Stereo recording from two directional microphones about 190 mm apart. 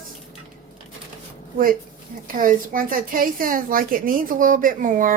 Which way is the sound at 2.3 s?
45° right (ahead or behind).